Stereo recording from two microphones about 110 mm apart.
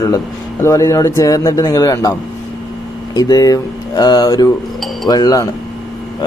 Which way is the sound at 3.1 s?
35° left (ahead or behind).